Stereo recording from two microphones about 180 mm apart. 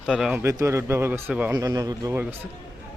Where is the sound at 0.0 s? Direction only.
Centre (ahead or behind); by 2.2 s 20° right (ahead or behind).